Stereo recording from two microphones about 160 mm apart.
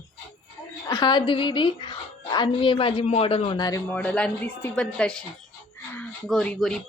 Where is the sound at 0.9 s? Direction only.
25° left (ahead or behind).